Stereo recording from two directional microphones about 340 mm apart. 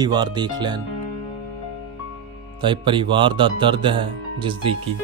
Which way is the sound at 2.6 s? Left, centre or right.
Centre.